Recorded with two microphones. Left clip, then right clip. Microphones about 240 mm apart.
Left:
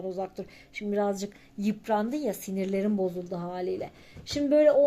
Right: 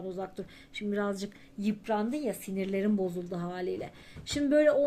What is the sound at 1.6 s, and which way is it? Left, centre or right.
Speech, left.